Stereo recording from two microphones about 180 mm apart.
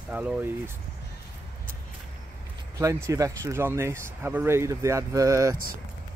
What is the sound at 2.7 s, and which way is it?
Speech, 15° right (ahead or behind).